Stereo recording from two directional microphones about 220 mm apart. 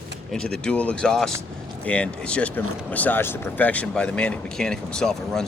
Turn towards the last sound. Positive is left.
turn(degrees=5)  # may be behind; listen again after turning